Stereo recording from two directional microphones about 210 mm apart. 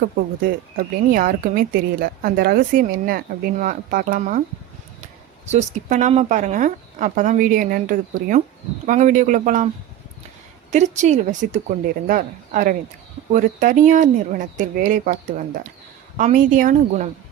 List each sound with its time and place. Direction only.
0.8 s a woman's voice: 45° right (ahead or behind)
5.5 s speech: 35° right (ahead or behind)
10.7 s speech: 35° right (ahead or behind)